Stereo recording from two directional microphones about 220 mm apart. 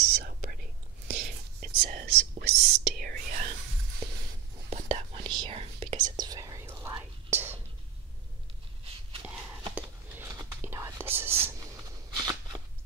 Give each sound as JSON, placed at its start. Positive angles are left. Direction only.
{"t": 0.2, "sound": "whispering", "side_deg": -40}
{"t": 2.5, "sound": "whispering", "side_deg": -45}
{"t": 4.6, "sound": "whispering", "side_deg": -30}
{"t": 9.8, "sound": "whispering", "side_deg": -10}
{"t": 12.1, "sound": "shuffling cards", "side_deg": -15}